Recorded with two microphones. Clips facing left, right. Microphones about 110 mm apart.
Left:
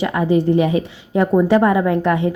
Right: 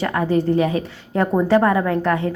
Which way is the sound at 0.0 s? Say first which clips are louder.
Left 2 dB; 15° left (ahead or behind).